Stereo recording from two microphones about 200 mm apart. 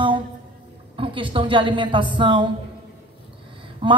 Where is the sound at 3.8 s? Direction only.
25° right (ahead or behind).